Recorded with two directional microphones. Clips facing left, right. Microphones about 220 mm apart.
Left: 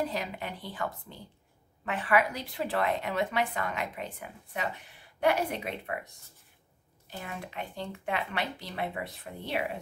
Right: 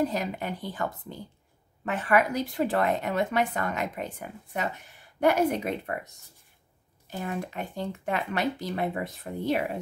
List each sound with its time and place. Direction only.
0.0 s a woman's voice: 45° right (ahead or behind)